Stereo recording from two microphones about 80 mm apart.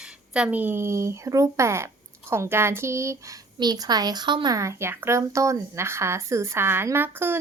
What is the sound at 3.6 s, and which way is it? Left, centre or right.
Speech, right.